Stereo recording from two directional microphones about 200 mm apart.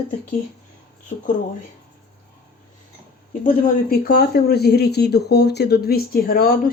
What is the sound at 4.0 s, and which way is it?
Speech, 50° left (ahead or behind).